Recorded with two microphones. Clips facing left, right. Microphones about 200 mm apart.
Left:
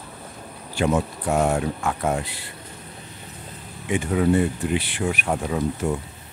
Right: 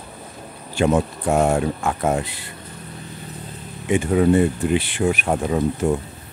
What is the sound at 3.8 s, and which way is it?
Speech, 25° right (ahead or behind).